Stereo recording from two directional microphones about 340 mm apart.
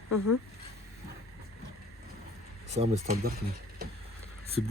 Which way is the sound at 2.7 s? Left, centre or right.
Centre.